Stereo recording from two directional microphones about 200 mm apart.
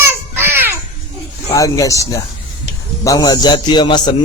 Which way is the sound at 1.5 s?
15° left (ahead or behind).